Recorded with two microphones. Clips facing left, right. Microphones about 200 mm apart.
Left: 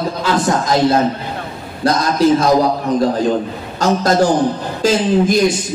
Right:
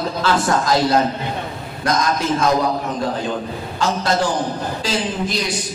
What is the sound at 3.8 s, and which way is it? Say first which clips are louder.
A woman's voice: left 6 dB; 45° left (ahead or behind).